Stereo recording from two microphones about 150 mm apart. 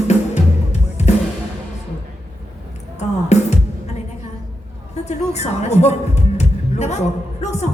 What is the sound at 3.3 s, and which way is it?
Music, 50° left (ahead or behind).